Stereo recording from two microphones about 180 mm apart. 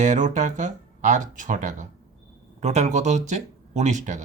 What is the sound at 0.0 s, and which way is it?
Speech, 40° right (ahead or behind).